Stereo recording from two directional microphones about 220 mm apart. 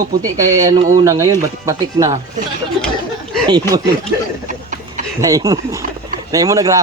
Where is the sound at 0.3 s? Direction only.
15° right (ahead or behind).